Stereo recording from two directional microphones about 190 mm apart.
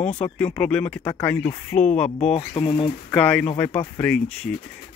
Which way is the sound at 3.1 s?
5° left (ahead or behind).